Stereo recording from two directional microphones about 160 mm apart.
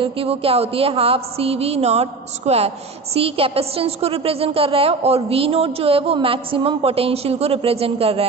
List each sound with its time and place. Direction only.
0.0 s a woman's voice: 35° right (ahead or behind)